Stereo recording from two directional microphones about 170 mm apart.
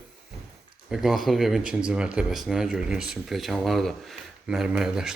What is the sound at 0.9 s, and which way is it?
Speech, centre (ahead or behind).